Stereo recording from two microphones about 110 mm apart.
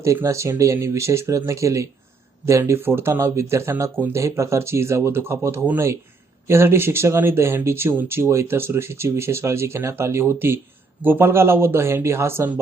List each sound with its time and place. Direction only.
0.0 s speech: 25° right (ahead or behind)